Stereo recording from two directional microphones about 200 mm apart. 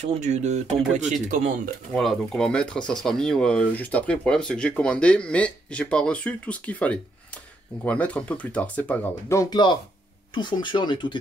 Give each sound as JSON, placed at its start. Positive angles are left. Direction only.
{"t": 0.0, "sound": "speech", "side_deg": -35}
{"t": 2.0, "sound": "speech", "side_deg": 0}